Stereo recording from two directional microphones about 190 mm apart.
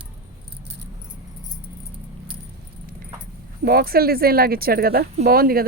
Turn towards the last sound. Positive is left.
turn(degrees=-50)  # may be behind; listen again after turning